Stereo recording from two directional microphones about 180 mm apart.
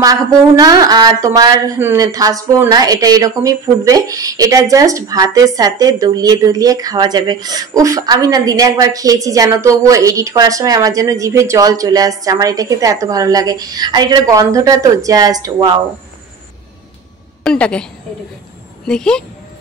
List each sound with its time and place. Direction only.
0.0 s a woman's voice: 20° right (ahead or behind)
17.4 s a woman's voice: 5° left (ahead or behind)
18.9 s a woman's voice: 5° left (ahead or behind)